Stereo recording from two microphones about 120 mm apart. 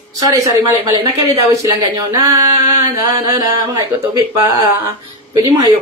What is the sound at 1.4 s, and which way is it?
Speech, 30° right (ahead or behind).